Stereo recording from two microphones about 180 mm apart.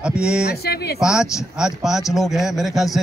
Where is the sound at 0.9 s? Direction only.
5° right (ahead or behind).